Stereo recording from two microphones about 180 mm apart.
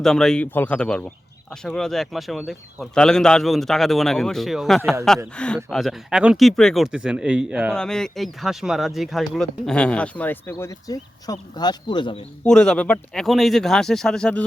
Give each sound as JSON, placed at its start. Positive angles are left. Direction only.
{"t": 0.0, "sound": "speech", "side_deg": 0}
{"t": 12.5, "sound": "speech", "side_deg": 5}